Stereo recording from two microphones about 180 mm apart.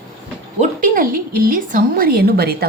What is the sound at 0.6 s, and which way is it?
A woman's voice, 50° right (ahead or behind).